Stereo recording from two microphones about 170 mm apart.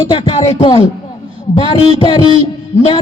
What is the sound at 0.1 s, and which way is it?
A man's voice, 30° left (ahead or behind).